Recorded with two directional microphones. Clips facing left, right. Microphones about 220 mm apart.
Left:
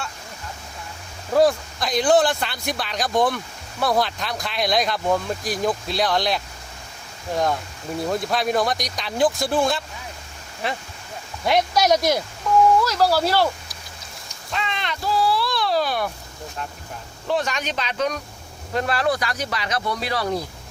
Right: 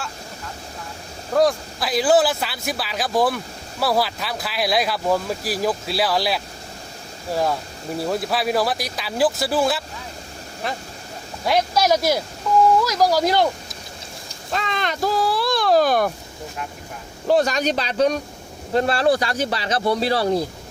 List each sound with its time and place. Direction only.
1.3 s speech: centre (ahead or behind)
7.9 s speech: 5° right (ahead or behind)
11.4 s speech: centre (ahead or behind); by 13.5 s 15° right (ahead or behind)
14.5 s a sound: 45° right (ahead or behind)
17.2 s speech: 40° right (ahead or behind)